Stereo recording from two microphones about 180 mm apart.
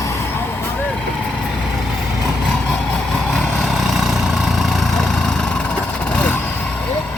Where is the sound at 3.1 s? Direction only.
5° left (ahead or behind).